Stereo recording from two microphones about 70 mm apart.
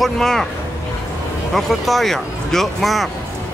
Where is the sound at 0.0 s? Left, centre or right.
Centre.